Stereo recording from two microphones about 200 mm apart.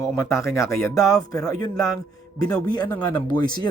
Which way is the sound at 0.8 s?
15° left (ahead or behind).